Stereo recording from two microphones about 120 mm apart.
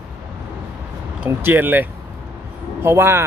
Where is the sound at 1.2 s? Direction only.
15° right (ahead or behind).